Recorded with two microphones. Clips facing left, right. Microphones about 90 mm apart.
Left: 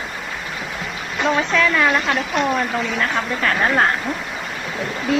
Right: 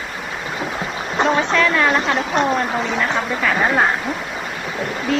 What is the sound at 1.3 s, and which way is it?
Speech, centre (ahead or behind).